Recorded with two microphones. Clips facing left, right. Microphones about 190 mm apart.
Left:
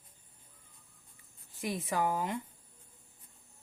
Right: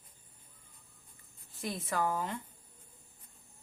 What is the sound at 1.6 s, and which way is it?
Speech, 15° left (ahead or behind).